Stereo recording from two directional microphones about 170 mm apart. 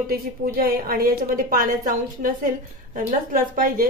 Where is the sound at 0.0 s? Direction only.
60° right (ahead or behind).